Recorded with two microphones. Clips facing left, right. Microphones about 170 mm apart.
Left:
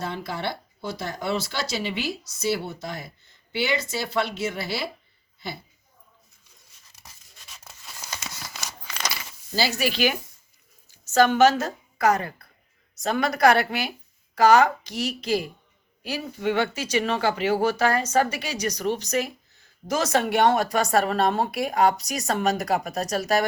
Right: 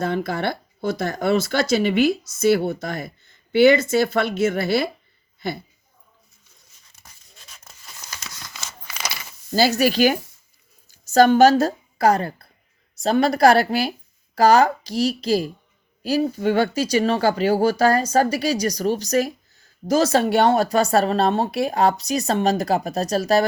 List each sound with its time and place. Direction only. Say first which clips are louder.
0.0 s speech: right 7 dB; 50° right (ahead or behind)
8.5 s a sound: even; centre (ahead or behind)
9.6 s a woman's voice: right 7 dB; 40° right (ahead or behind)